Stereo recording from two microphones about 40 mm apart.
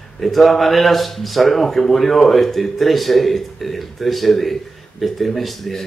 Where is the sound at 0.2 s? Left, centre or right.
Centre.